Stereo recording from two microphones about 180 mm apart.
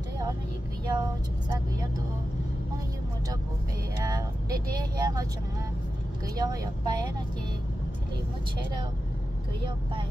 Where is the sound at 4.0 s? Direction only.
20° right (ahead or behind).